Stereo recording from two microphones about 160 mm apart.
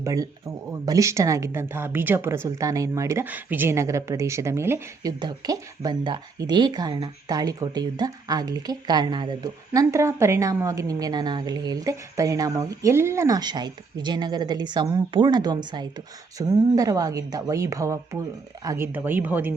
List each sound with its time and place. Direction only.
0.0 s speech: 20° right (ahead or behind)